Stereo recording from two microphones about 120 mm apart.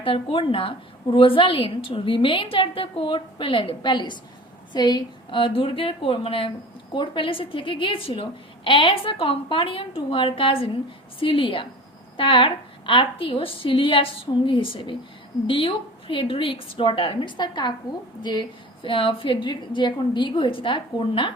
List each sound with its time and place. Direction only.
0.0 s a woman's voice: 50° left (ahead or behind)